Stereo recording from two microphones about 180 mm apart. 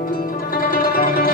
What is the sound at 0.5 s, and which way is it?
Zither, 55° left (ahead or behind).